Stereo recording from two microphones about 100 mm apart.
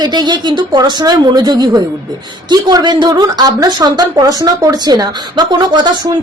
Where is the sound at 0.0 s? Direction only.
45° right (ahead or behind).